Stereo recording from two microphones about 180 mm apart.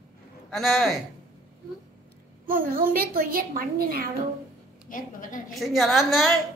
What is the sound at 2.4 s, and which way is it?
A woman's voice, 50° right (ahead or behind).